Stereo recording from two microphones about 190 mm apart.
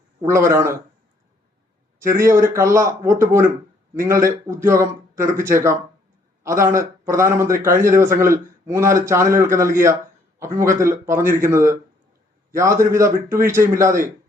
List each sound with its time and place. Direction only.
0.2 s a man's voice: 15° right (ahead or behind)
2.0 s a man's voice: 15° right (ahead or behind)